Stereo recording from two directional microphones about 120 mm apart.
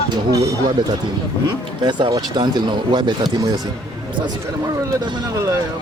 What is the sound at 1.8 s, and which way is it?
Speech, 40° right (ahead or behind).